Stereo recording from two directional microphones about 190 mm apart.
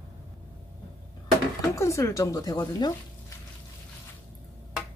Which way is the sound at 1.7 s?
15° left (ahead or behind).